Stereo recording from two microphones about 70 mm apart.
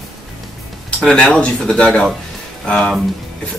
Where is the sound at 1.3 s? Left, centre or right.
Centre.